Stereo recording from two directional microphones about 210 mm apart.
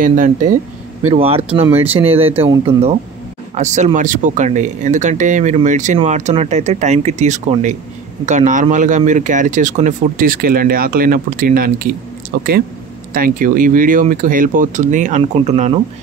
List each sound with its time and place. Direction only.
0.0 s speech: 40° right (ahead or behind); by 2.8 s 20° right (ahead or behind)
3.5 s speech: 35° right (ahead or behind)